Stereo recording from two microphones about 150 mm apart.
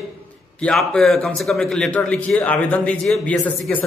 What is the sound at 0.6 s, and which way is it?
A man's voice, 5° left (ahead or behind).